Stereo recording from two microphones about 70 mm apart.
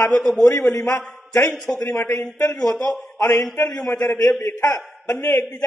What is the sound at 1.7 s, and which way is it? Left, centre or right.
Speech, left.